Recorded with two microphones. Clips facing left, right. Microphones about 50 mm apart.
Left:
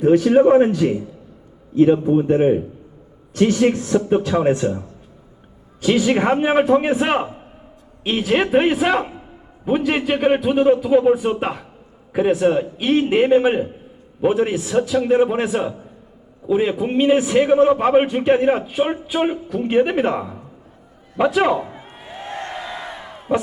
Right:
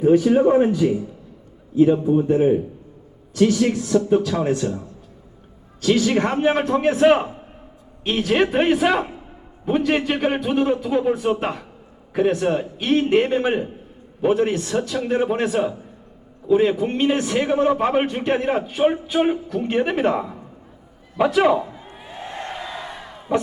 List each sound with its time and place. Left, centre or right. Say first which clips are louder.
0.0 s speech: left 2 dB; left
1.7 s a man's voice: left 2 dB; left
3.3 s a man's voice: left 2 dB; left
5.8 s a man's voice: left 2 dB; centre